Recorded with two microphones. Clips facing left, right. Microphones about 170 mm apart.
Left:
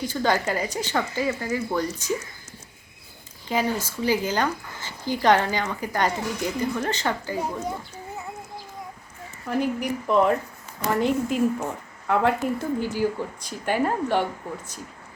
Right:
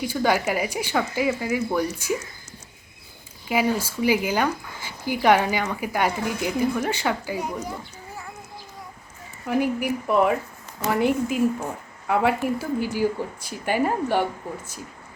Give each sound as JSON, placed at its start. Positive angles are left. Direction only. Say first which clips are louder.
{"t": 0.0, "sound": "speech", "louder": "right 1 dB", "side_deg": -10}
{"t": 3.5, "sound": "speech", "louder": "right 2 dB", "side_deg": -10}
{"t": 7.3, "sound": "speech", "louder": "left 1 dB", "side_deg": 30}
{"t": 9.5, "sound": "speech", "louder": "right 2 dB", "side_deg": -10}